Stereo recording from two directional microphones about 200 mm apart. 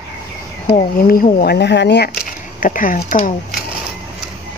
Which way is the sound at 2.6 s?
45° left (ahead or behind).